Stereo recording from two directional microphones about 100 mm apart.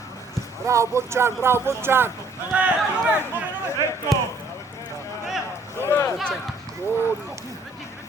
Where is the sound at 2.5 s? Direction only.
15° right (ahead or behind).